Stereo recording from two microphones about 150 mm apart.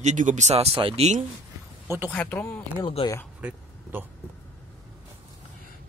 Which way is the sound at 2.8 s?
35° left (ahead or behind).